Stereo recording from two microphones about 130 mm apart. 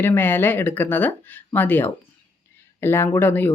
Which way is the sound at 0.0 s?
15° left (ahead or behind).